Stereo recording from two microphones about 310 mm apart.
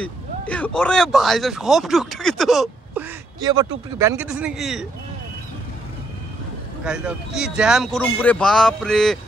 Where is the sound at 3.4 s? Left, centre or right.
Centre.